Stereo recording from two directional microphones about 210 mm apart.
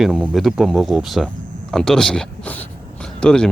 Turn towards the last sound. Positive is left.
turn(degrees=5)  # may be behind; listen again after turning